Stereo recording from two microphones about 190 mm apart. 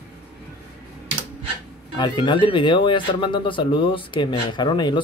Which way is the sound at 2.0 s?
25° left (ahead or behind).